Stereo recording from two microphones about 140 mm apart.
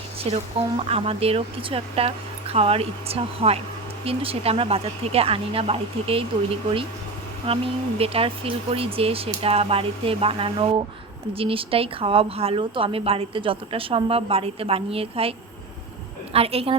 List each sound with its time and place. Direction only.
0.3 s a woman's voice: 45° right (ahead or behind)